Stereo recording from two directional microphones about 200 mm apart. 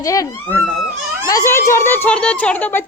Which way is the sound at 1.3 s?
15° left (ahead or behind).